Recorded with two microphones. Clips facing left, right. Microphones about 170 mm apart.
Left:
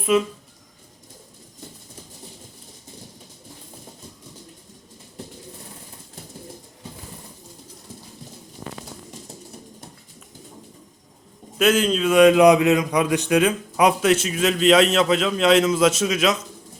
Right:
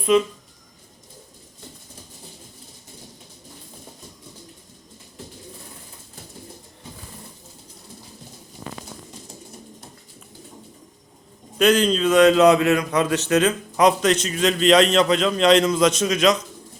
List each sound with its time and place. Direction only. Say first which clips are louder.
0.0 s speech: right 2 dB; 5° left (ahead or behind)
11.5 s a man's voice: right 1 dB; 5° left (ahead or behind)